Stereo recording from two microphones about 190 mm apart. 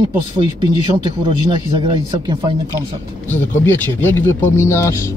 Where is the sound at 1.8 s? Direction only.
25° right (ahead or behind).